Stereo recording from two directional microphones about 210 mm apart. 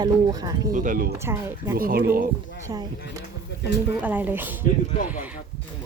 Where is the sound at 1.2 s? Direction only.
10° right (ahead or behind).